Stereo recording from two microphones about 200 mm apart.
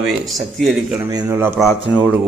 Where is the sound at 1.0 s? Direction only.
15° right (ahead or behind).